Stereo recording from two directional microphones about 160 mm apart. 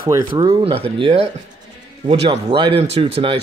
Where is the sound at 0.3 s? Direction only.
30° right (ahead or behind).